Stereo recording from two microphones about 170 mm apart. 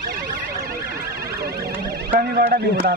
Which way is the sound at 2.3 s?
60° right (ahead or behind).